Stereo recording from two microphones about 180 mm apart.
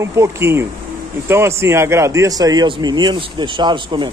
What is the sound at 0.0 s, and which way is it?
A man's voice, 15° right (ahead or behind).